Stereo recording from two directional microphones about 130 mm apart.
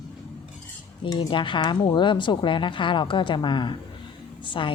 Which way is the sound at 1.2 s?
40° left (ahead or behind).